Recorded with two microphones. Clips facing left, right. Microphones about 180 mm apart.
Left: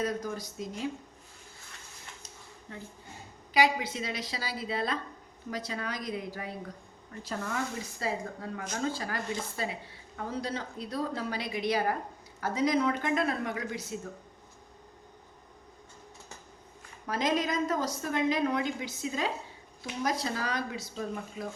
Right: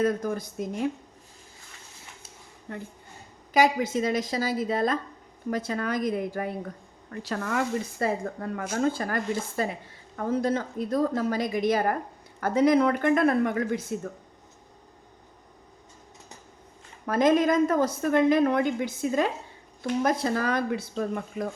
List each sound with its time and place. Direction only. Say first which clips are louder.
0.0 s speech: right 7 dB; 55° right (ahead or behind)
2.7 s speech: right 7 dB; 60° right (ahead or behind)
3.5 s a woman's voice: right 5 dB; 45° right (ahead or behind)
7.1 s a woman's voice: right 6 dB; 70° right (ahead or behind); by 14.0 s 50° right (ahead or behind)
17.1 s a woman's voice: right 8 dB; 50° right (ahead or behind)